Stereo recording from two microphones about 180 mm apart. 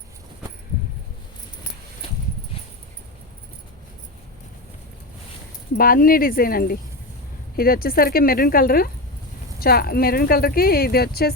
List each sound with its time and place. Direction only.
5.7 s speech: 55° left (ahead or behind)